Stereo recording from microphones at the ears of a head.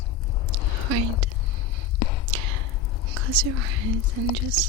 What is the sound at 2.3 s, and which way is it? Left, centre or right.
Whispering, right.